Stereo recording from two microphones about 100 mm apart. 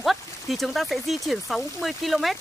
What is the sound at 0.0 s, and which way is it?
Speech, centre (ahead or behind).